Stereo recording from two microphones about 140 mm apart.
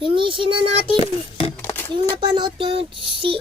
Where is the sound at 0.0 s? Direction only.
40° right (ahead or behind).